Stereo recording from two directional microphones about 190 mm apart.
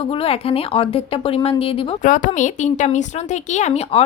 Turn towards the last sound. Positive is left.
turn(degrees=35)  # may be behind; listen again after turning